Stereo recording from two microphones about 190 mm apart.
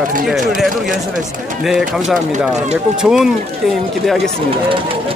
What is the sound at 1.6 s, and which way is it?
Speech, centre (ahead or behind).